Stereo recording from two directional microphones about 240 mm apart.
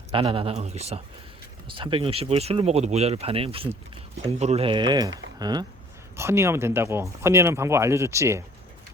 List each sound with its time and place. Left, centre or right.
0.1 s speech: right